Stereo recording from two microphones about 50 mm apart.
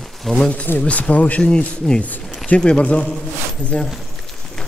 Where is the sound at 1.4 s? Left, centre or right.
Centre.